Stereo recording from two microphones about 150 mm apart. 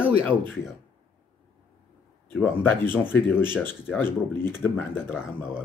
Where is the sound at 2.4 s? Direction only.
15° left (ahead or behind).